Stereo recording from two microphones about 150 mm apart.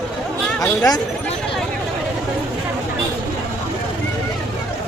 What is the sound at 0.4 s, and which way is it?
Chatter, 5° left (ahead or behind).